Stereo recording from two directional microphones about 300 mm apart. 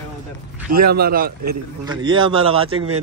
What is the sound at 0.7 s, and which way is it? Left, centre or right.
Speech, right.